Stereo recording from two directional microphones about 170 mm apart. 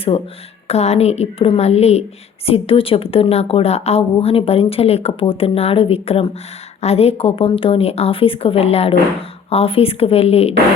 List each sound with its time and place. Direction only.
0.7 s a woman's voice: 40° left (ahead or behind)